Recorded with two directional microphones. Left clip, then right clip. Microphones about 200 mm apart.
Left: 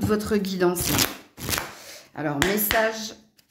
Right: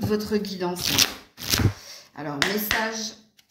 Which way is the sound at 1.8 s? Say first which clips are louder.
Left 5 dB; 50° left (ahead or behind).